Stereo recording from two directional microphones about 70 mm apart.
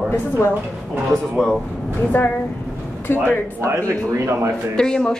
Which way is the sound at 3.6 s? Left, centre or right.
Right.